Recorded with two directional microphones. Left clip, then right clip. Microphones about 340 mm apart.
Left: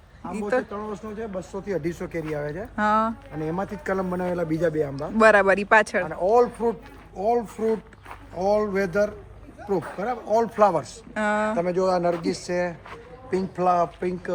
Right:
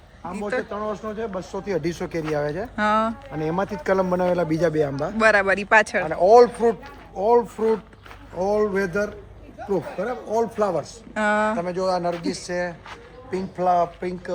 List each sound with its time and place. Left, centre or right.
0.7 s speech: centre
2.7 s speech: centre
3.4 s speech: right
5.1 s speech: centre
6.1 s speech: right
7.2 s speech: centre
10.6 s speech: left
11.1 s speech: centre
11.5 s speech: left